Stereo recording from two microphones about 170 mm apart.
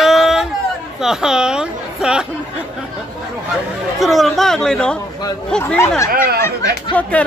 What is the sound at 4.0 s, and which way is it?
Speech, centre (ahead or behind).